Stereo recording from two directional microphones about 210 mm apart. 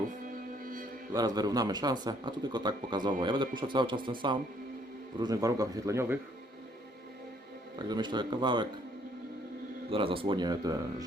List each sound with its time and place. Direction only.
0.6 s mantra: 40° right (ahead or behind)
1.1 s speech: 20° right (ahead or behind)
7.9 s speech: 20° right (ahead or behind)
9.9 s speech: 25° right (ahead or behind)